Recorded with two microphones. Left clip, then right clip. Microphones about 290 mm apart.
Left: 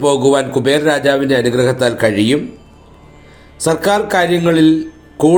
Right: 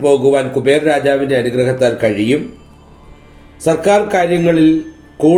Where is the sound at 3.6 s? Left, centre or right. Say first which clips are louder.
Right 2 dB; left.